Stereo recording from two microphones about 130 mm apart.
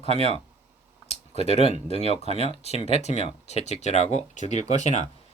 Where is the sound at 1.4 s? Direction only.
50° left (ahead or behind).